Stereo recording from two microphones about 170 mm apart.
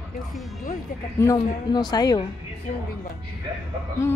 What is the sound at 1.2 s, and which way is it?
A woman's voice, 20° left (ahead or behind).